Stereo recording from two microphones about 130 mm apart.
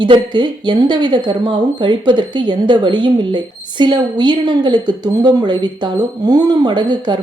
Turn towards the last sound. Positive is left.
turn(degrees=-35)  # may be behind; listen again after turning